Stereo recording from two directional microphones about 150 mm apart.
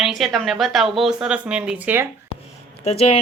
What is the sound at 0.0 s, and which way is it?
Speech, centre (ahead or behind).